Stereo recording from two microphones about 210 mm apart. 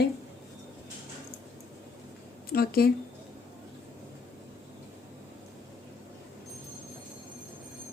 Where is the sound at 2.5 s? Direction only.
45° left (ahead or behind).